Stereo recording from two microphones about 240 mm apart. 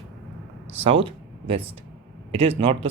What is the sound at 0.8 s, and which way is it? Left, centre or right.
Speech, right.